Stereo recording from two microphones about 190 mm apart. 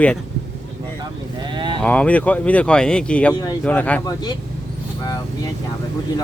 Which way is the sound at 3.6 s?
5° left (ahead or behind).